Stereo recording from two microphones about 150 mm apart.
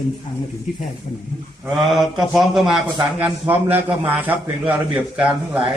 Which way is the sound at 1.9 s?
Centre (ahead or behind).